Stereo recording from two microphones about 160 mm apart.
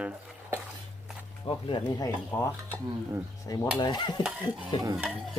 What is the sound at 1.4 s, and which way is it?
Speech, 25° left (ahead or behind).